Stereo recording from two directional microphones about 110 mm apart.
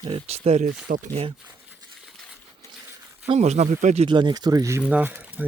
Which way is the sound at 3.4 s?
90° right.